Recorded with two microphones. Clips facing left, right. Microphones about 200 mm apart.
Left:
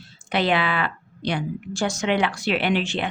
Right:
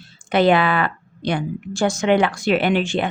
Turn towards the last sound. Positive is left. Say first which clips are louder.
# right 5 dB
turn(degrees=-50)  # may be behind; listen again after turning